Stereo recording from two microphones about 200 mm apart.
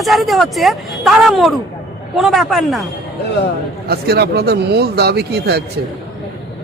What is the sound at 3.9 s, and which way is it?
Speech, 50° right (ahead or behind).